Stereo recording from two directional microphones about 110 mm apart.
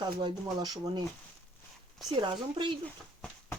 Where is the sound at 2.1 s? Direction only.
40° right (ahead or behind).